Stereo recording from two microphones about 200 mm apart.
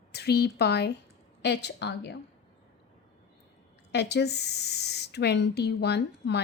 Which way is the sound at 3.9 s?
60° left (ahead or behind).